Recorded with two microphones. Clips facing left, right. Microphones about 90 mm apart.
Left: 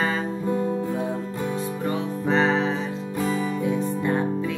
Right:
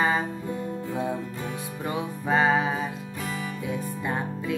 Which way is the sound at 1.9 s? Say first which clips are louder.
Left 1 dB; 10° right (ahead or behind).